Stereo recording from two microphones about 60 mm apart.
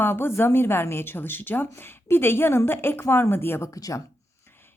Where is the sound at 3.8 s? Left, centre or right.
Left.